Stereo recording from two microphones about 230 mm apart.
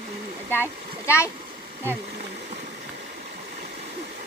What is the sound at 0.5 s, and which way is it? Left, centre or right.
Speech, centre.